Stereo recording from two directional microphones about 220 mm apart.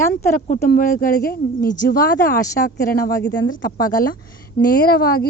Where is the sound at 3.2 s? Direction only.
60° left (ahead or behind).